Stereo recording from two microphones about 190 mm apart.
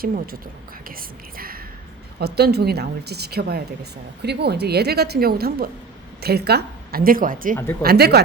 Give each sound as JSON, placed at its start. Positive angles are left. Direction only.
{"t": 0.0, "sound": "a woman's voice", "side_deg": -50}